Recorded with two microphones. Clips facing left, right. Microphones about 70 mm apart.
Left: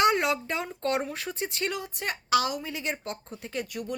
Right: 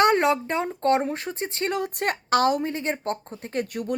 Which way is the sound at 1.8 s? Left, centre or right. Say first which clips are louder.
Right 8 dB; right.